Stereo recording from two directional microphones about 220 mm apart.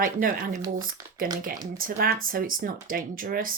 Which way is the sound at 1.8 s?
40° right (ahead or behind).